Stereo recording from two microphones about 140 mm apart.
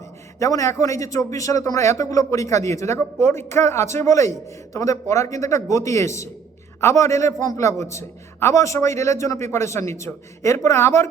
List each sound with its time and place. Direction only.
0.3 s a man's voice: 20° left (ahead or behind)